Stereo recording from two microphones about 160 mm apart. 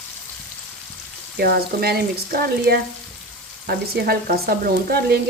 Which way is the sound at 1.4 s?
80° right.